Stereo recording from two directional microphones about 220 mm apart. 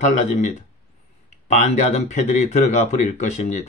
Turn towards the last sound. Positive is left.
turn(degrees=35)  # may be behind; listen again after turning